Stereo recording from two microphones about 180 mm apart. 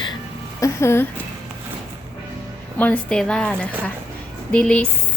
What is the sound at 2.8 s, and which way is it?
A woman's voice, 5° left (ahead or behind).